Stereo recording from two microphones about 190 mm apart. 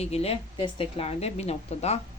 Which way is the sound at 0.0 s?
30° left (ahead or behind).